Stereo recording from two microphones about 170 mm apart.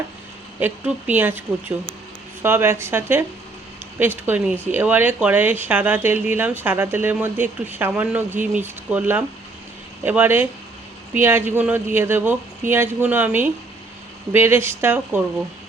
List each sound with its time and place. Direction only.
0.6 s speech: 10° right (ahead or behind)